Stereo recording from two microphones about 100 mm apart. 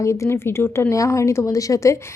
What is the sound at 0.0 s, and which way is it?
A woman's voice, 30° left (ahead or behind).